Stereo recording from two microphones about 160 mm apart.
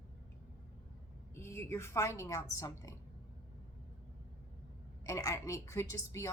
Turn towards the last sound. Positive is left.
turn(degrees=20)  # may be behind; listen again after turning